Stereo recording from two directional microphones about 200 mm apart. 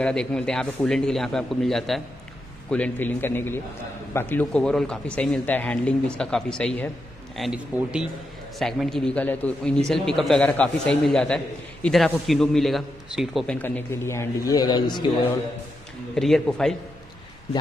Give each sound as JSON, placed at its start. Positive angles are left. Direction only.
{"t": 0.0, "sound": "a man's voice", "side_deg": 5}
{"t": 13.6, "sound": "a man's voice", "side_deg": 10}
{"t": 16.2, "sound": "a man's voice", "side_deg": 0}